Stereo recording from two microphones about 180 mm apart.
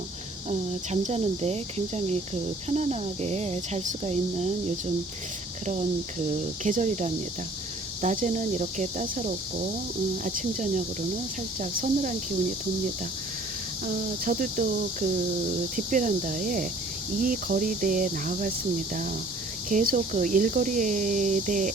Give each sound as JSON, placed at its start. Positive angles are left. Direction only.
{"t": 0.9, "sound": "speech", "side_deg": -40}
{"t": 5.6, "sound": "speech", "side_deg": -40}
{"t": 13.8, "sound": "speech", "side_deg": -50}
{"t": 15.7, "sound": "speech", "side_deg": -45}
{"t": 19.7, "sound": "speech", "side_deg": -45}